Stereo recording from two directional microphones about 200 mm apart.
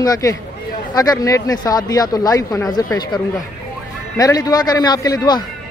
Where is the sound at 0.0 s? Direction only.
15° left (ahead or behind).